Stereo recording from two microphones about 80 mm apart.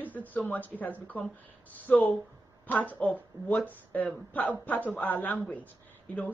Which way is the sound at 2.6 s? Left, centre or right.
Left.